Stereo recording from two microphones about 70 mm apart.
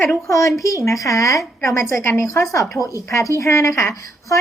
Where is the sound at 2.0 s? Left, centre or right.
Left.